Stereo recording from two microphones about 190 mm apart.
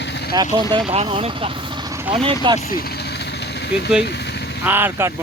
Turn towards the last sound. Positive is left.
turn(degrees=-10)  # may be behind; listen again after turning